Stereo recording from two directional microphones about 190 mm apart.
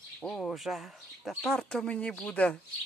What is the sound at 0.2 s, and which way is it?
Speech, 5° left (ahead or behind).